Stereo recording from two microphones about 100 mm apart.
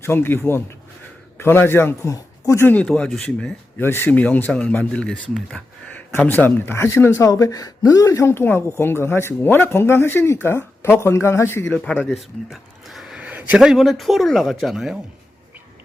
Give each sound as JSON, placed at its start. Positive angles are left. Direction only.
{"t": 0.0, "sound": "a woman's voice", "side_deg": 20}
{"t": 2.7, "sound": "speech", "side_deg": 5}
{"t": 3.8, "sound": "speech", "side_deg": 20}
{"t": 5.9, "sound": "a woman's voice", "side_deg": 15}
{"t": 12.5, "sound": "speech", "side_deg": 0}